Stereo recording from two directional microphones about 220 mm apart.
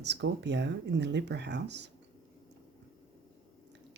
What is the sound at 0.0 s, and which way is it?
Speech, 50° right (ahead or behind).